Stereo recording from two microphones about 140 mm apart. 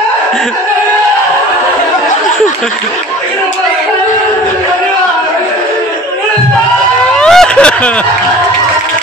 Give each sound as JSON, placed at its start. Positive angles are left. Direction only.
{"t": 7.2, "sound": "vehicle", "side_deg": 5}